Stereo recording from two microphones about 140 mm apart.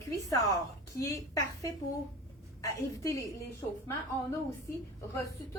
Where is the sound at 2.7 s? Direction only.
20° left (ahead or behind).